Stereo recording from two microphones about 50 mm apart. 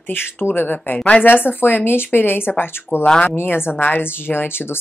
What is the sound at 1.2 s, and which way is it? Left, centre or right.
Speech, left.